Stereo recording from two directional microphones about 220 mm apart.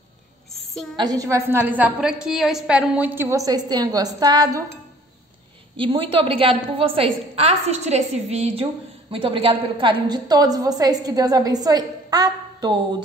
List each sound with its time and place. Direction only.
0.9 s a woman's voice: 15° right (ahead or behind)
5.8 s a woman's voice: 25° right (ahead or behind)